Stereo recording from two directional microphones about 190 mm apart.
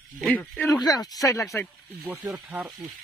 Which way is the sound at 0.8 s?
20° left (ahead or behind).